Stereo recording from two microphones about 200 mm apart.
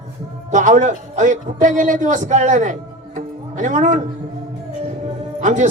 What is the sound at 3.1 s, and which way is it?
Music, 40° right (ahead or behind).